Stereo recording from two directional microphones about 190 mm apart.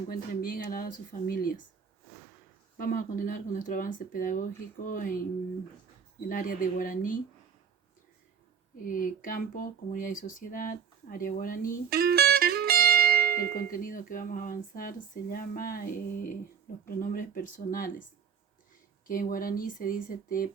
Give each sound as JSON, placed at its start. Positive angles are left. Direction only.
{"t": 0.1, "sound": "speech", "side_deg": 45}
{"t": 2.7, "sound": "speech", "side_deg": 45}
{"t": 8.8, "sound": "speech", "side_deg": 45}
{"t": 11.9, "sound": "music", "side_deg": -55}
{"t": 13.4, "sound": "speech", "side_deg": 50}
{"t": 19.0, "sound": "speech", "side_deg": 45}